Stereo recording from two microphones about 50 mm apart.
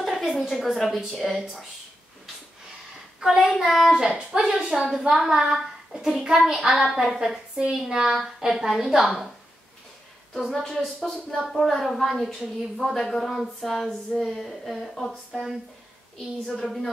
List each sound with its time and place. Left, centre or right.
0.0 s a woman's voice: centre
3.2 s speech: centre
5.4 s a sound: centre
6.3 s speech: centre
10.8 s speech: centre
16.5 s speech: centre